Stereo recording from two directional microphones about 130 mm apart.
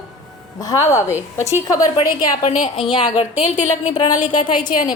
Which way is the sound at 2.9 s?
45° left (ahead or behind).